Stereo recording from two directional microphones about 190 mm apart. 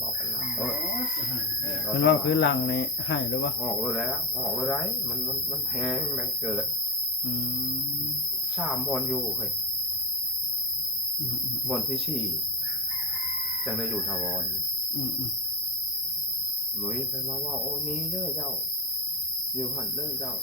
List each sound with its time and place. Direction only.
1.9 s speech: 60° left (ahead or behind)
3.6 s speech: centre (ahead or behind)
6.4 s speech: 5° right (ahead or behind)
8.5 s speech: centre (ahead or behind)
11.7 s speech: centre (ahead or behind)
13.7 s speech: centre (ahead or behind)